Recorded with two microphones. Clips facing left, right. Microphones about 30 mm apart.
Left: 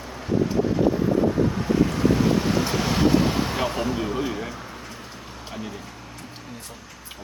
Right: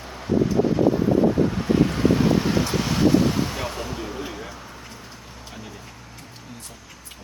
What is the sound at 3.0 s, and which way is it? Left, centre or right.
Artillery fire, centre.